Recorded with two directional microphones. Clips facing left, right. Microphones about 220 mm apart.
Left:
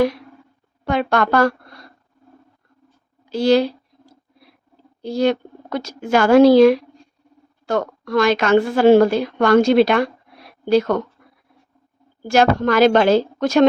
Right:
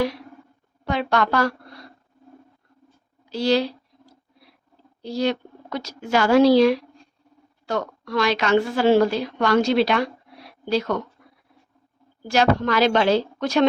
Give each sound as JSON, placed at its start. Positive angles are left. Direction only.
{"t": 0.9, "sound": "a woman's voice", "side_deg": 50}
{"t": 3.3, "sound": "a sound", "side_deg": 50}
{"t": 5.0, "sound": "a woman's voice", "side_deg": 50}
{"t": 12.3, "sound": "a woman's voice", "side_deg": 50}